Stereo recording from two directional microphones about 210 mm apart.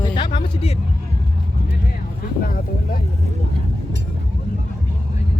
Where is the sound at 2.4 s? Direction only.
45° left (ahead or behind).